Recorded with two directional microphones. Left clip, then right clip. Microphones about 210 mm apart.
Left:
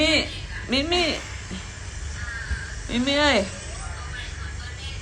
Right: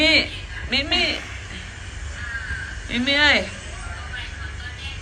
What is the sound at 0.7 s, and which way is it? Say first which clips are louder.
Speech: right 2 dB; 30° left (ahead or behind).